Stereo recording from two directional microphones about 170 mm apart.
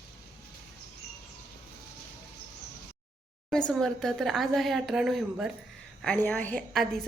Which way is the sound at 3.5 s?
5° left (ahead or behind).